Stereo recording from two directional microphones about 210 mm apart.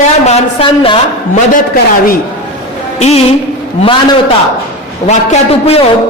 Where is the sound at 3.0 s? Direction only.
30° left (ahead or behind).